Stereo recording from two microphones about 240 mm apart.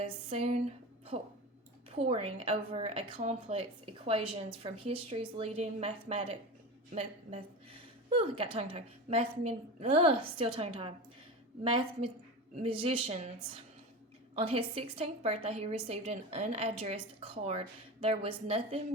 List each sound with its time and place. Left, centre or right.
0.0 s speech: right
2.0 s a woman's voice: right